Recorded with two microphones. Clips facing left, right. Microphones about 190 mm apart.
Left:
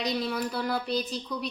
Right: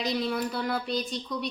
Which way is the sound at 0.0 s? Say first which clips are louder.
Right 1 dB; centre (ahead or behind).